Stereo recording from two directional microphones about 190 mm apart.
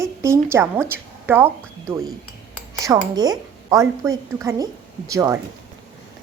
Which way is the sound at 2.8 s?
20° right (ahead or behind).